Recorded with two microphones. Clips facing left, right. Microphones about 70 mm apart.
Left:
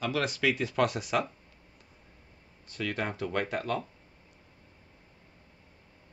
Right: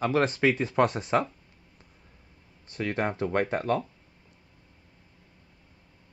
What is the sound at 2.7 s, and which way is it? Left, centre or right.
Speech, right.